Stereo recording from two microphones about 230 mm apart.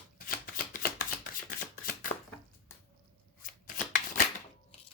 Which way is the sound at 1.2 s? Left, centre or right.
Left.